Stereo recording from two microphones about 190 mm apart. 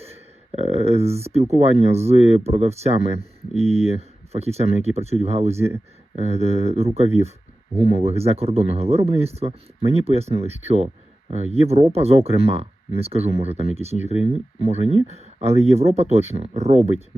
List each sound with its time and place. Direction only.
0.5 s speech: 35° right (ahead or behind)